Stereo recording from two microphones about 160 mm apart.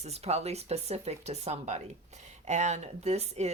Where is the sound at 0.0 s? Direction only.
40° right (ahead or behind).